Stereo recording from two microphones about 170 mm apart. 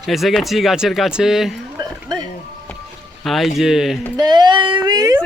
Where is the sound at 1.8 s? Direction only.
25° right (ahead or behind).